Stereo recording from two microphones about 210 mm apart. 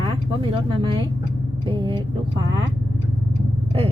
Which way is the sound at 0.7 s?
25° right (ahead or behind).